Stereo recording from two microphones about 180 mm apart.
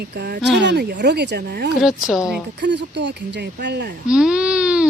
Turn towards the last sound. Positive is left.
turn(degrees=-5)  # may be behind; listen again after turning